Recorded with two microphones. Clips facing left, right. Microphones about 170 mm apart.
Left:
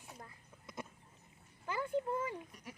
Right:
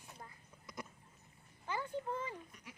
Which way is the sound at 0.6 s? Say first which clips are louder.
Left 2 dB; 25° left (ahead or behind).